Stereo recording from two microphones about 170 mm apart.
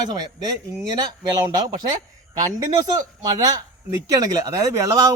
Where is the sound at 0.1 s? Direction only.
25° right (ahead or behind).